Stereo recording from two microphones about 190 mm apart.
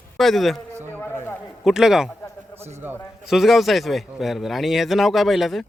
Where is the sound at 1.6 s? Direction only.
Centre (ahead or behind).